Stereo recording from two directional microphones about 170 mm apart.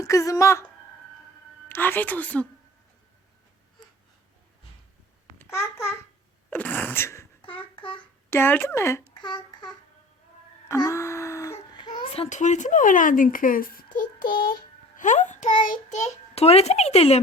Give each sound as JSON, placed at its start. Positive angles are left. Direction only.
{"t": 0.0, "sound": "a woman's voice", "side_deg": 20}
{"t": 1.6, "sound": "a woman's voice", "side_deg": 10}
{"t": 5.4, "sound": "babbling", "side_deg": 15}
{"t": 6.5, "sound": "sneeze", "side_deg": 10}
{"t": 7.4, "sound": "a sound", "side_deg": 30}
{"t": 8.3, "sound": "a woman's voice", "side_deg": 15}
{"t": 9.2, "sound": "a sound", "side_deg": 25}
{"t": 10.7, "sound": "speech", "side_deg": 20}
{"t": 16.3, "sound": "speech", "side_deg": 35}